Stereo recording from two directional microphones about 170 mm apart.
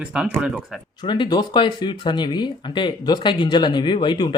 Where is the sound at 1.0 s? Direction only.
30° left (ahead or behind).